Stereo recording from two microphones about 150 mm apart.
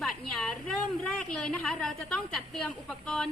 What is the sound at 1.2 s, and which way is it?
A woman's voice, 5° left (ahead or behind).